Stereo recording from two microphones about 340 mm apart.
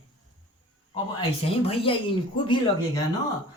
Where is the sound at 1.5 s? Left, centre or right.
Centre.